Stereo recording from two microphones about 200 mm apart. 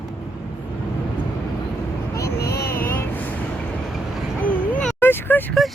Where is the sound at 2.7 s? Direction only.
10° left (ahead or behind).